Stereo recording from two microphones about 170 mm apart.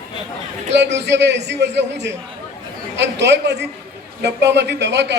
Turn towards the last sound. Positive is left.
turn(degrees=-90)